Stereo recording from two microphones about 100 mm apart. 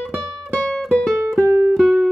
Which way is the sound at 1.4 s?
35° right (ahead or behind).